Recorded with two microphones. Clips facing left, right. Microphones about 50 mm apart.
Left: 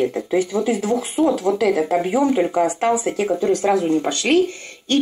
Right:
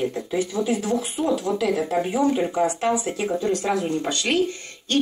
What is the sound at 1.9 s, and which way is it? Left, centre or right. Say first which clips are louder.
Speech: left 3 dB; centre.